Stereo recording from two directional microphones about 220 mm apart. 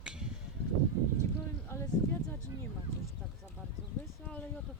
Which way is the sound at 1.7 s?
10° left (ahead or behind).